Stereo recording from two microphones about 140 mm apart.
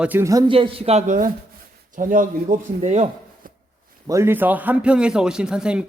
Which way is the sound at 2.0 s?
75° right (ahead or behind).